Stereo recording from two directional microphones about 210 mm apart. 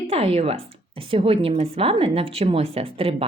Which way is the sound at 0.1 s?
30° right (ahead or behind).